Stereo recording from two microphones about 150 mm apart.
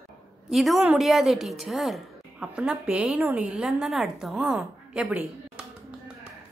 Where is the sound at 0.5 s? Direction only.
Centre (ahead or behind).